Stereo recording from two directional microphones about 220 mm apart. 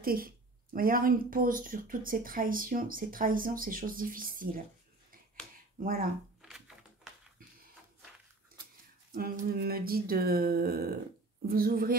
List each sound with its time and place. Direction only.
0.0 s speech: 40° right (ahead or behind)
5.8 s speech: 40° right (ahead or behind)
9.1 s a sound: 45° right (ahead or behind)
11.4 s speech: 40° right (ahead or behind)